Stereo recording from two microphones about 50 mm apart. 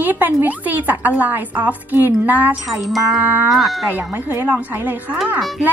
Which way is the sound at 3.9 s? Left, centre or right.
Right.